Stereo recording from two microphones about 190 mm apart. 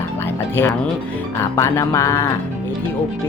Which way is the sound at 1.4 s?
15° left (ahead or behind).